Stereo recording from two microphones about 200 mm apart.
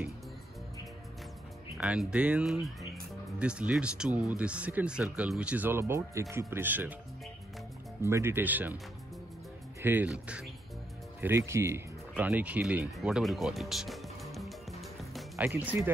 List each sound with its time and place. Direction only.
1.8 s speech: 5° right (ahead or behind)
8.0 s speech: 15° right (ahead or behind)
9.8 s speech: 10° right (ahead or behind)